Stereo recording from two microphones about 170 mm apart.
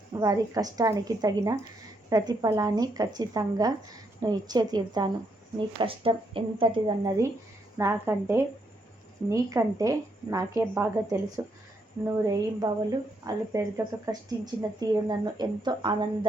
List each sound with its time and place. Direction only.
0.1 s a woman's voice: 20° right (ahead or behind)